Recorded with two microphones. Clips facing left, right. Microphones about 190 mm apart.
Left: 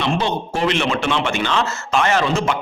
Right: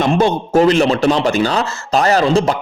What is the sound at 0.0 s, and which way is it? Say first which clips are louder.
A man's voice: right 6 dB; 45° right (ahead or behind).